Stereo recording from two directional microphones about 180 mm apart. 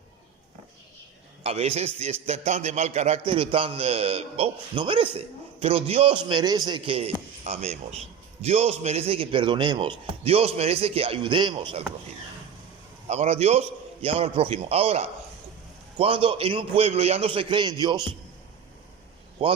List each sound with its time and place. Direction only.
1.5 s a man's voice: 35° right (ahead or behind)
13.1 s a man's voice: 35° right (ahead or behind)